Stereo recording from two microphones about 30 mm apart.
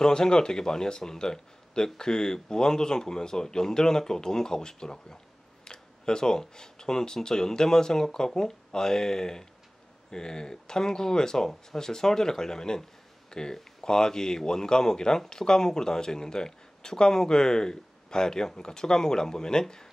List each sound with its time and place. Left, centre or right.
0.0 s speech: left